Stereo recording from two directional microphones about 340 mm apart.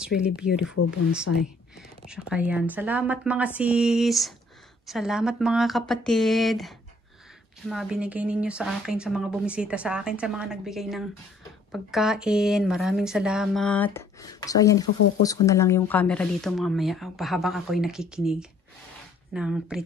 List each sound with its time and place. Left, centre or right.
0.7 s speech: left
1.8 s speech: centre